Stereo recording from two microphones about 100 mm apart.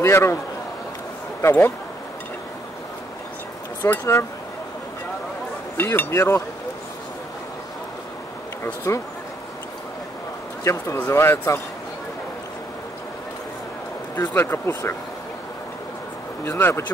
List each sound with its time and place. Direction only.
0.0 s speech: 25° left (ahead or behind)
1.4 s speech: 20° left (ahead or behind)
3.8 s speech: 25° left (ahead or behind)
5.8 s speech: 20° left (ahead or behind)
8.9 s speech: 25° left (ahead or behind)
10.6 s speech: 30° left (ahead or behind)
14.1 s speech: 20° left (ahead or behind)
16.4 s speech: 25° left (ahead or behind)